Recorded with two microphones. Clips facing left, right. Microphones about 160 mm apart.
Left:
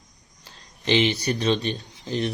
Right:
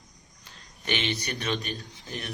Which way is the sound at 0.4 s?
30° left (ahead or behind).